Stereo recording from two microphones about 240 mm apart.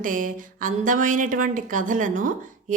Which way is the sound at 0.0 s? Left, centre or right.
Right.